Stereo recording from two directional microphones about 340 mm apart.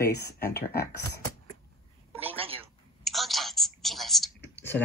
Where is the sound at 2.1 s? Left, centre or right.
Centre.